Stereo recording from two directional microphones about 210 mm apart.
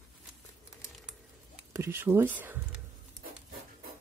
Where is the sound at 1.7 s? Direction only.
10° right (ahead or behind).